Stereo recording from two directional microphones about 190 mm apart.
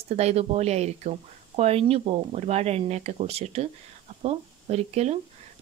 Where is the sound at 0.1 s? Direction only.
35° right (ahead or behind).